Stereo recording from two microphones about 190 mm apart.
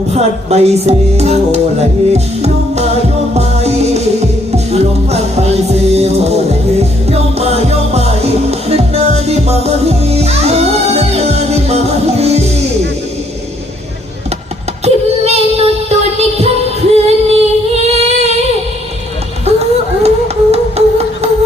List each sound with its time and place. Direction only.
0.1 s music: 35° right (ahead or behind)
14.8 s child singing: 35° right (ahead or behind)
16.9 s singing: 35° right (ahead or behind)
19.5 s music: 35° right (ahead or behind)